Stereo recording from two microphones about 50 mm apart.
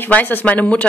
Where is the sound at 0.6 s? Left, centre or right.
Left.